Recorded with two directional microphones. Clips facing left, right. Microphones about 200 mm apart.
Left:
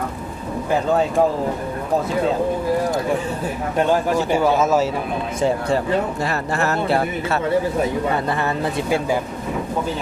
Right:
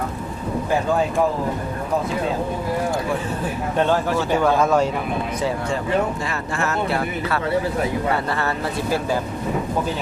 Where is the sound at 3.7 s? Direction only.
15° left (ahead or behind).